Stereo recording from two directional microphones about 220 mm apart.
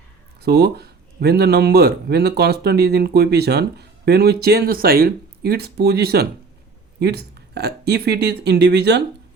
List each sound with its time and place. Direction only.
0.4 s a man's voice: 45° right (ahead or behind)